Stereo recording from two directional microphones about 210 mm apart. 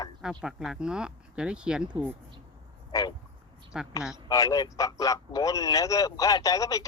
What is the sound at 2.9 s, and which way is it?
Speech, 15° left (ahead or behind).